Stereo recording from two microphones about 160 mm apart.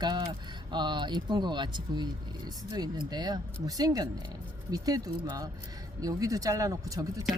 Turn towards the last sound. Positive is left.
turn(degrees=-20)  # may be behind; listen again after turning